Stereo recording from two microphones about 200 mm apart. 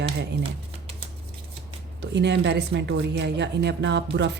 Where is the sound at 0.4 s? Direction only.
25° right (ahead or behind).